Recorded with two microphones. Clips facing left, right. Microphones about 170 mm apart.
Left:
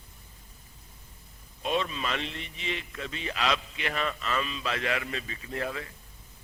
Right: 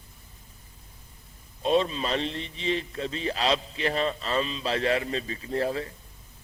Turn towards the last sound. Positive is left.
turn(degrees=-30)  # may be behind; listen again after turning